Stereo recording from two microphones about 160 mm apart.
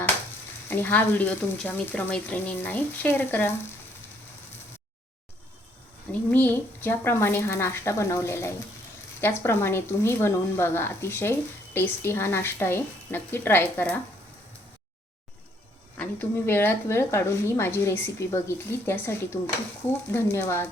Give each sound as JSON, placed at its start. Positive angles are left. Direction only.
{"t": 0.7, "sound": "speech", "side_deg": 10}
{"t": 6.1, "sound": "speech", "side_deg": 10}
{"t": 16.0, "sound": "speech", "side_deg": 15}